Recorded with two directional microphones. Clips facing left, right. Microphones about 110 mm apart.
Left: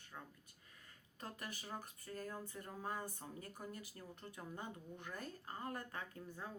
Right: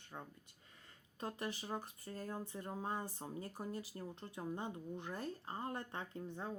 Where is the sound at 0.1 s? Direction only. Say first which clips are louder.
Right 4 dB; 25° right (ahead or behind).